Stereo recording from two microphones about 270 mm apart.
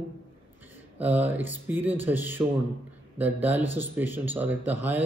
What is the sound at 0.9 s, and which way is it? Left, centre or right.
Speech, centre.